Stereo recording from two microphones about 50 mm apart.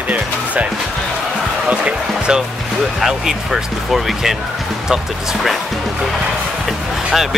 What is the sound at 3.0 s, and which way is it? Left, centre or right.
Speech, centre.